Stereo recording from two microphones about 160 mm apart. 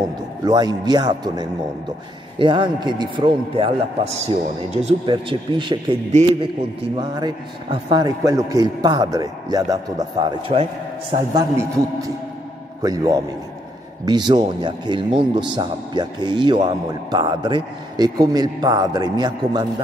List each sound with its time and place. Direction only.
0.4 s a man's voice: 25° right (ahead or behind); by 4.9 s 45° right (ahead or behind)
5.0 s a man's voice: 30° right (ahead or behind)
7.0 s a man's voice: 25° right (ahead or behind)
10.2 s a man's voice: 35° right (ahead or behind)
11.5 s a man's voice: 20° right (ahead or behind)